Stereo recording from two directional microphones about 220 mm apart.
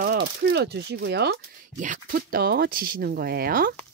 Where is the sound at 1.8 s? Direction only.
35° right (ahead or behind).